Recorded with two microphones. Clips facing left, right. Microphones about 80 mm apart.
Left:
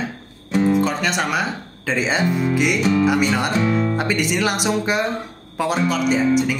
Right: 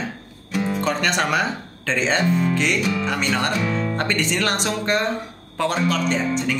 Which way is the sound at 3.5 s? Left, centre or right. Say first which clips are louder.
Left 4 dB; left.